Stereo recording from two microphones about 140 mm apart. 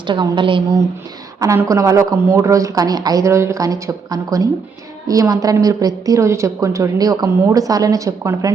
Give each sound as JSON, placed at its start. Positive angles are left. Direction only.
{"t": 0.1, "sound": "a woman's voice", "side_deg": -35}
{"t": 1.5, "sound": "a woman's voice", "side_deg": -25}